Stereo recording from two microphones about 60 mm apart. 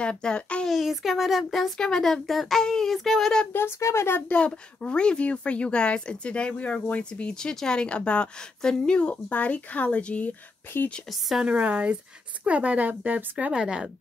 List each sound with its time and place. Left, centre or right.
0.0 s a woman's voice: centre
0.7 s speech: centre
1.8 s a woman's voice: centre
3.5 s speech: left
4.5 s a woman's voice: centre
11.1 s speech: centre
11.4 s speech: right
13.5 s speech: centre